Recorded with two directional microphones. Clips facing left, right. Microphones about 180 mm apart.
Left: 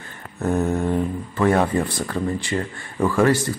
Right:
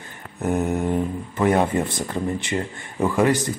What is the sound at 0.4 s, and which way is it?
Speech, 15° right (ahead or behind).